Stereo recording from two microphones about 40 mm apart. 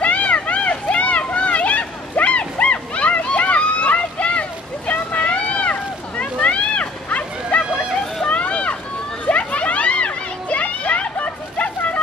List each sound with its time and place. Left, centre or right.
0.0 s a sound: left
8.3 s run: left
9.2 s children playing: left